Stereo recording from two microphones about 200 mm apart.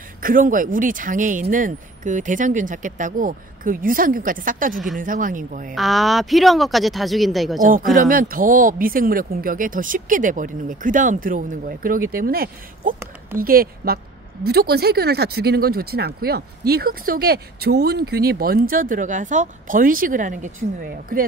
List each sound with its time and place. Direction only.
0.2 s speech: 45° right (ahead or behind)
5.8 s speech: centre (ahead or behind)
7.6 s speech: 45° right (ahead or behind)